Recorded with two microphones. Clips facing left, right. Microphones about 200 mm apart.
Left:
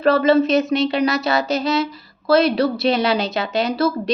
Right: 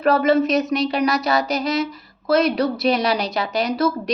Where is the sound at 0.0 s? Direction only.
30° left (ahead or behind).